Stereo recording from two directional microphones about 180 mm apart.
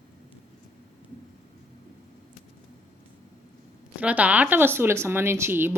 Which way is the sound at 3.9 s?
10° right (ahead or behind).